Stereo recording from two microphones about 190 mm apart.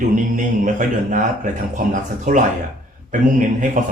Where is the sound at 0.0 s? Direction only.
45° right (ahead or behind).